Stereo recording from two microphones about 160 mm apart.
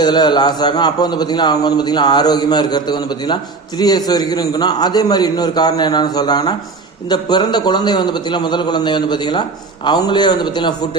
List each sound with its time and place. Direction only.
0.0 s a man's voice: 25° left (ahead or behind)